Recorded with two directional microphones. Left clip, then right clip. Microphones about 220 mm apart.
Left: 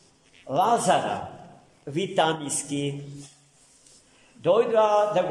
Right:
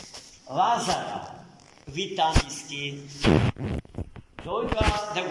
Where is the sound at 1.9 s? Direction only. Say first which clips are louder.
Left 2 dB; 35° left (ahead or behind).